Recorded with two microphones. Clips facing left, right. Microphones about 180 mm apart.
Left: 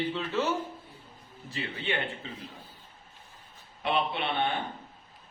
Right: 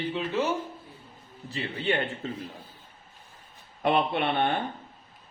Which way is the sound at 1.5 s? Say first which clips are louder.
Right 5 dB; 35° right (ahead or behind).